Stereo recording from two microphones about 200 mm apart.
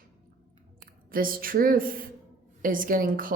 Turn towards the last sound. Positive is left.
turn(degrees=-45)  # may be behind; listen again after turning